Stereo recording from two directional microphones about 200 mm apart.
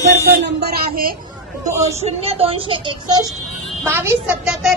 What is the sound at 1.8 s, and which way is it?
Speech, 35° right (ahead or behind).